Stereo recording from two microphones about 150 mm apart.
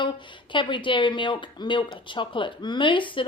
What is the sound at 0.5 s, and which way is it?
Speech, 35° left (ahead or behind).